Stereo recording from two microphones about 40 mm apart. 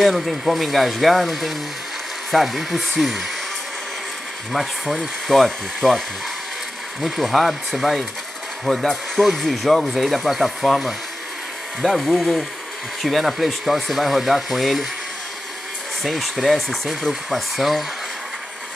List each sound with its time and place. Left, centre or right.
0.0 s speech: centre
4.5 s speech: centre
8.7 s speech: centre
9.2 s speech: centre
16.0 s speech: centre